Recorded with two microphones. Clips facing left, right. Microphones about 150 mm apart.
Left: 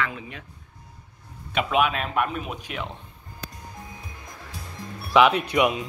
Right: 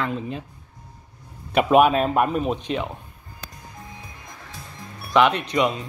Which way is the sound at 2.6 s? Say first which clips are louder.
Right 7 dB; 20° right (ahead or behind).